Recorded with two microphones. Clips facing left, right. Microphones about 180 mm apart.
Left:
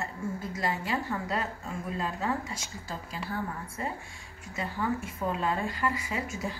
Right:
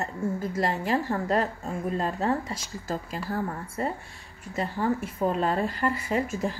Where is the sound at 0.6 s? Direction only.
45° right (ahead or behind).